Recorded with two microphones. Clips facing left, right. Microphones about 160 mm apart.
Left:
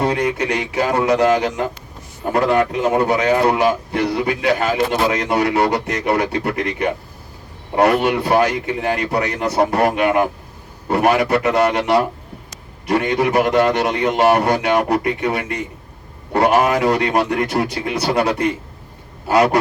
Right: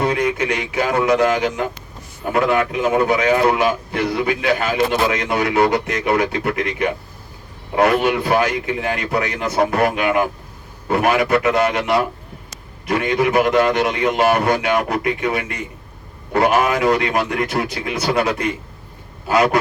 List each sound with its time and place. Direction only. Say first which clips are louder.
0.0 s a man's voice: even; 35° left (ahead or behind)